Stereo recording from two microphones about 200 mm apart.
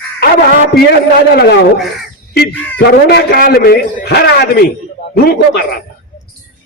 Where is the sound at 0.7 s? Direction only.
50° left (ahead or behind).